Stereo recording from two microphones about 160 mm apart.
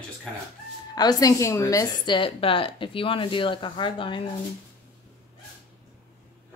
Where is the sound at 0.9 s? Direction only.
25° left (ahead or behind).